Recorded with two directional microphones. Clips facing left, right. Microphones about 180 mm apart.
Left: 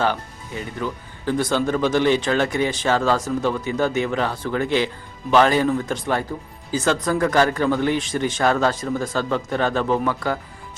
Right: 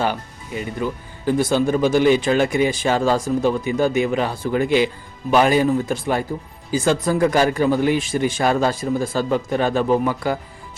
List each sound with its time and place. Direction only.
0.8 s speech: 10° right (ahead or behind)